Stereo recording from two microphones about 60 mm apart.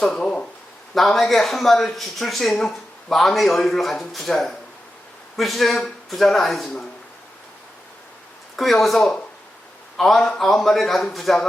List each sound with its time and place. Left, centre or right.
0.0 s a sound: centre
0.9 s speech: centre
8.5 s speech: centre